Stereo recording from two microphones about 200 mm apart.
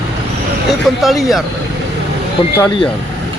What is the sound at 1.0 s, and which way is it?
Speech, centre (ahead or behind).